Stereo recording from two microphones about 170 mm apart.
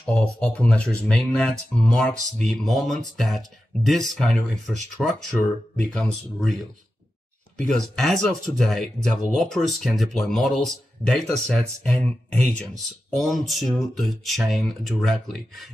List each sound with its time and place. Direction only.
0.0 s speech: 5° left (ahead or behind)
7.5 s speech: 5° left (ahead or behind)